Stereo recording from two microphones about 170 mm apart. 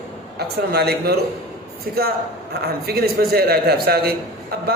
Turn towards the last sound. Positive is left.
turn(degrees=-65)  # may be behind; listen again after turning